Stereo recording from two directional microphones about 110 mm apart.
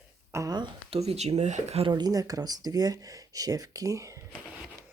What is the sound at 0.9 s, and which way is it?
Speech, 70° right (ahead or behind).